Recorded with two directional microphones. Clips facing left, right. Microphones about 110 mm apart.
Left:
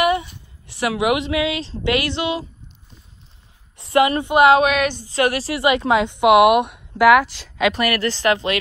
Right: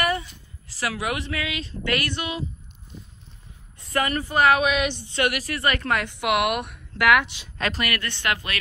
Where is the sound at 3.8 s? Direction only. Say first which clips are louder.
Left 8 dB; 25° left (ahead or behind).